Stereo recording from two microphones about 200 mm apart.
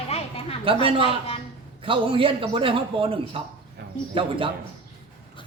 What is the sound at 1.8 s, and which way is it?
A man's voice, 25° right (ahead or behind).